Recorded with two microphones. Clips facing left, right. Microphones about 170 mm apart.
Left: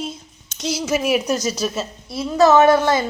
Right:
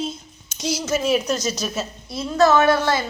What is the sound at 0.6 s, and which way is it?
A woman's voice, centre (ahead or behind).